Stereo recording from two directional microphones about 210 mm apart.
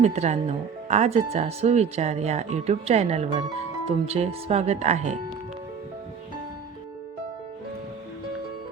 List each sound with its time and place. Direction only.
0.0 s speech: 30° right (ahead or behind)